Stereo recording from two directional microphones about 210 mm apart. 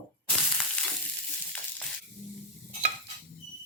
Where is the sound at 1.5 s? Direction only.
5° left (ahead or behind).